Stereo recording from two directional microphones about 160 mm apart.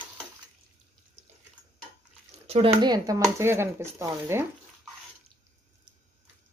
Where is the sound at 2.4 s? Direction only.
40° right (ahead or behind).